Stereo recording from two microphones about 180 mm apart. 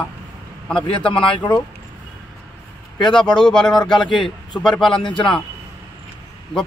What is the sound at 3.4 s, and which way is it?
Speech, 5° left (ahead or behind).